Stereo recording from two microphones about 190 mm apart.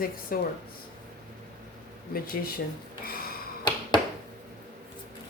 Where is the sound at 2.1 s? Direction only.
50° left (ahead or behind).